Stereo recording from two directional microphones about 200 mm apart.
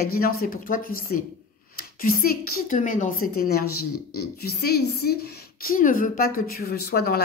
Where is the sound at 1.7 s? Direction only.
45° left (ahead or behind).